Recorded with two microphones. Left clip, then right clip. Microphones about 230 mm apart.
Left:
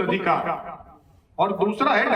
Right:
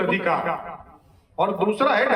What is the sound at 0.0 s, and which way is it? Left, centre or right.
A man's voice, right.